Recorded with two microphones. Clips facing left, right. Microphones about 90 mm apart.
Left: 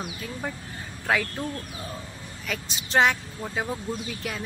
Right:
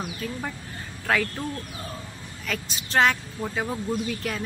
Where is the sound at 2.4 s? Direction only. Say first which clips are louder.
Right 2 dB; 15° left (ahead or behind).